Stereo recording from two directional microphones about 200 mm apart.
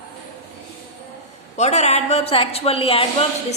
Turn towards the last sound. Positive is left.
turn(degrees=30)  # may be behind; listen again after turning